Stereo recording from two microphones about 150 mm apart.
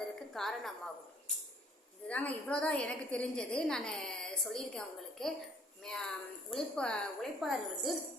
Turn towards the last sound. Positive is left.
turn(degrees=0)  # may be behind; listen again after turning